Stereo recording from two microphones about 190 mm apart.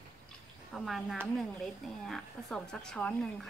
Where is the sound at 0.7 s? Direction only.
Centre (ahead or behind).